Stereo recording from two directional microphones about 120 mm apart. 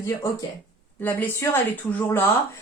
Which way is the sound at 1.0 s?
15° left (ahead or behind).